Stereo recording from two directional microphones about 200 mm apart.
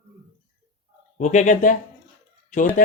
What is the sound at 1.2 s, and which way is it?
Speech, 35° left (ahead or behind).